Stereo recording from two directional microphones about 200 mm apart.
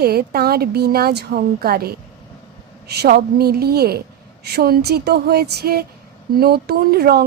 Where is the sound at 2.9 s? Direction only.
50° right (ahead or behind).